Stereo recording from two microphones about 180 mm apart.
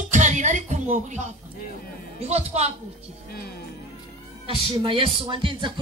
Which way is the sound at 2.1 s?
35° right (ahead or behind).